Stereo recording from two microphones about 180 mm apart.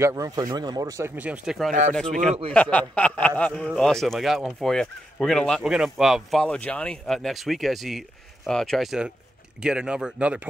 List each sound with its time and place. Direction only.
0.0 s speech: 20° right (ahead or behind); by 1.7 s 5° right (ahead or behind)
1.7 s speech: 45° right (ahead or behind)
2.5 s a man's voice: 5° left (ahead or behind)